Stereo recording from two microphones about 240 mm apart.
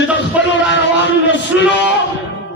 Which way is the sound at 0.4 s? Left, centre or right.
Centre.